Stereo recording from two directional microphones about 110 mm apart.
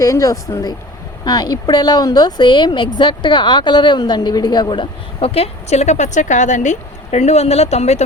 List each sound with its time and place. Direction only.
0.0 s a woman's voice: 30° left (ahead or behind); by 8.0 s 75° left (ahead or behind)